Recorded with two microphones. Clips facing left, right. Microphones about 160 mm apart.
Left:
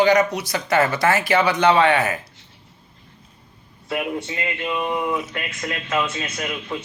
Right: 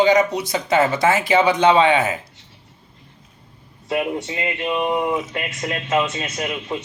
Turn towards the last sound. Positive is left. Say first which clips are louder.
# right 2 dB
turn(degrees=-20)  # may be behind; listen again after turning